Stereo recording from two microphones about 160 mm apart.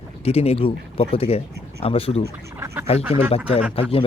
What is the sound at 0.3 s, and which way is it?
Speech, 40° left (ahead or behind).